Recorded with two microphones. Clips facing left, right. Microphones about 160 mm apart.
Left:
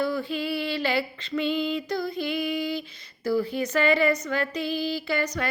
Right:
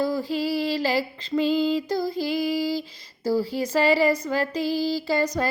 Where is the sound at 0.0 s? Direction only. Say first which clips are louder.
Right 3 dB; 35° right (ahead or behind).